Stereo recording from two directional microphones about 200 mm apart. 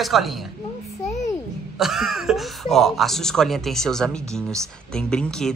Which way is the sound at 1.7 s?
Centre (ahead or behind).